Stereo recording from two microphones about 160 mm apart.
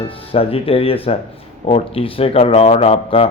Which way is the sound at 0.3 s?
35° left (ahead or behind).